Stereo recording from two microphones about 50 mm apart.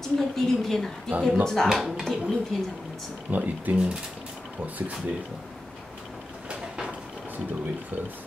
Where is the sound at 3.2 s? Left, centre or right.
Right.